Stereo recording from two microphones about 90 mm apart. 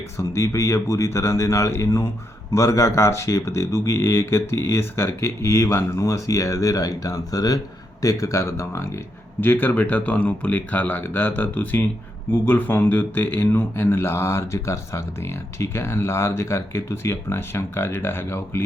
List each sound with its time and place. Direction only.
0.2 s speech: 35° left (ahead or behind)